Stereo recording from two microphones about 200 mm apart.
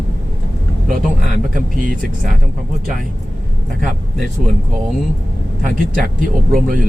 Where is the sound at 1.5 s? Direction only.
45° right (ahead or behind).